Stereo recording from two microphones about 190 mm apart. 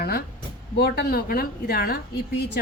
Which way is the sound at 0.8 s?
55° left (ahead or behind).